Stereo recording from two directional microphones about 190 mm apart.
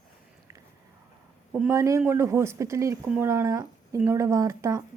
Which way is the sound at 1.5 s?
10° right (ahead or behind).